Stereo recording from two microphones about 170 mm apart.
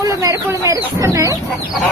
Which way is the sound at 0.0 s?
20° right (ahead or behind).